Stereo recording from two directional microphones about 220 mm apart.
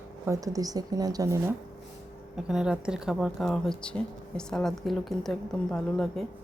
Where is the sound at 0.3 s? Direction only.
15° right (ahead or behind).